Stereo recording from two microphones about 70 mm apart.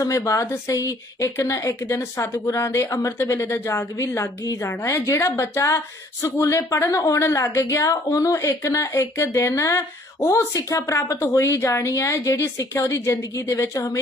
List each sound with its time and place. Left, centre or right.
0.0 s a woman's voice: left